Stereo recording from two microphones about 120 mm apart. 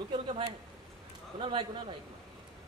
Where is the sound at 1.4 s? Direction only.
45° right (ahead or behind).